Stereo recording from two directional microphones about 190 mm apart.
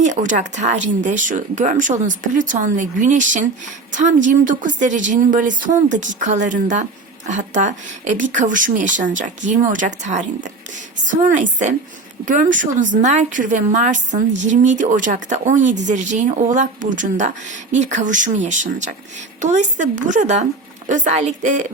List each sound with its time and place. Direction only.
0.0 s speech: 40° right (ahead or behind)